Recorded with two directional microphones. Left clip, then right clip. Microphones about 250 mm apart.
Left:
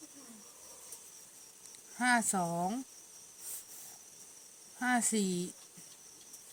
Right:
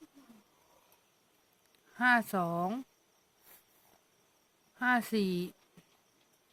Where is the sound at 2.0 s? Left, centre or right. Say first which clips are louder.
Right 2 dB; right.